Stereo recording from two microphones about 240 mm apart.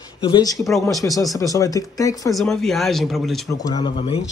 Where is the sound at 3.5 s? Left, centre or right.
Centre.